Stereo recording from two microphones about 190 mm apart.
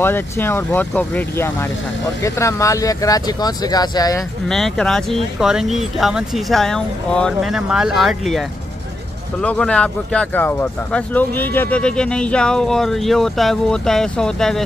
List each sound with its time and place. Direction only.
0.0 s speech: 10° left (ahead or behind)
4.5 s speech: centre (ahead or behind)